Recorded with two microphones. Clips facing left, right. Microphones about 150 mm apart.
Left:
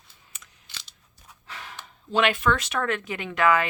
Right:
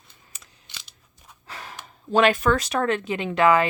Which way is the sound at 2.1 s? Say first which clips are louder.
Right 4 dB; 40° right (ahead or behind).